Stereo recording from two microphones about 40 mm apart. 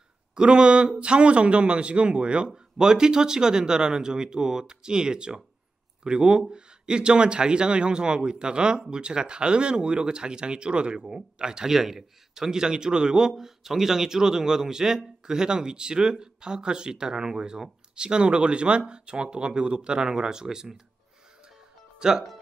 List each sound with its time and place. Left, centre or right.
0.3 s speech: right
2.5 s speech: centre
21.9 s music: centre